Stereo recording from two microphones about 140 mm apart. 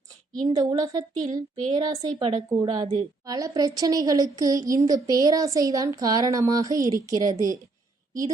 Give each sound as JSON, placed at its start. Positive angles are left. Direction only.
{"t": 0.4, "sound": "a woman's voice", "side_deg": -25}
{"t": 1.2, "sound": "speech", "side_deg": -60}
{"t": 1.7, "sound": "a woman's voice", "side_deg": -30}